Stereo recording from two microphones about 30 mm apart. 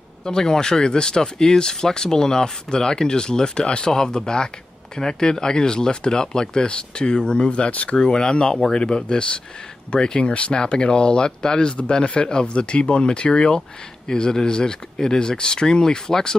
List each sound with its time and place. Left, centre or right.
0.2 s speech: left
10.3 s speech: left; by 16.3 s centre